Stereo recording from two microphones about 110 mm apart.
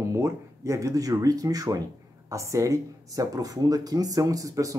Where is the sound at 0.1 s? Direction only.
25° right (ahead or behind).